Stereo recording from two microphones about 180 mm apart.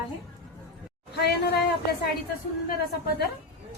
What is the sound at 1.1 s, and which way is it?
Speech, 65° left (ahead or behind).